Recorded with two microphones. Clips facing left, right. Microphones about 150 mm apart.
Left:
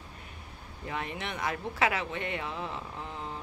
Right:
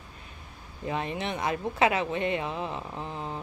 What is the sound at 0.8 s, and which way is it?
Speech, 25° right (ahead or behind).